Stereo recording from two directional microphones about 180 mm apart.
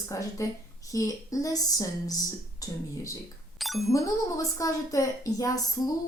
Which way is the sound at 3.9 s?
20° left (ahead or behind).